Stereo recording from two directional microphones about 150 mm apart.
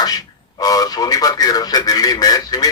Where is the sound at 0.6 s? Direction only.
25° left (ahead or behind).